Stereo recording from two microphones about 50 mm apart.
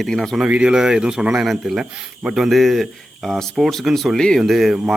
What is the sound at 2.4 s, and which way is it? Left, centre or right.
Speech, centre.